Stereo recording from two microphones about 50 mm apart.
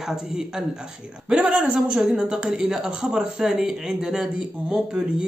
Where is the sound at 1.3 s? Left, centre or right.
Right.